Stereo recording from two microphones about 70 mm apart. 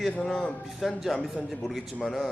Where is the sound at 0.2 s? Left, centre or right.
Centre.